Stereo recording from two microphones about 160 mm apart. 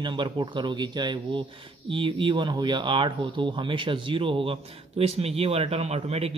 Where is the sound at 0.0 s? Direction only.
30° right (ahead or behind).